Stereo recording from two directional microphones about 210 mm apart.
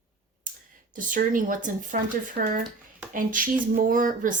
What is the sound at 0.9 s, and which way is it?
Speech, 40° right (ahead or behind).